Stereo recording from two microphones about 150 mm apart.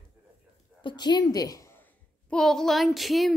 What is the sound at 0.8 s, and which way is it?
A woman's voice, 30° left (ahead or behind).